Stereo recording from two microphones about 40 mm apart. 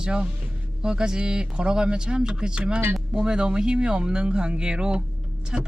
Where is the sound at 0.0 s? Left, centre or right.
Right.